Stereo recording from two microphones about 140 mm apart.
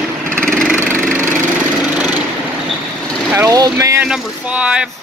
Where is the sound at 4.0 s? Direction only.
10° right (ahead or behind).